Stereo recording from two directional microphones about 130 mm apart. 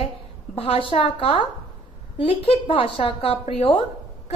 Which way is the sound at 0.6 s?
45° left (ahead or behind).